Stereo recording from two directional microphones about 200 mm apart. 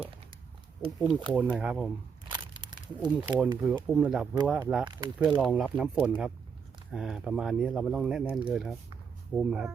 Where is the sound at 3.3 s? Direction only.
20° right (ahead or behind).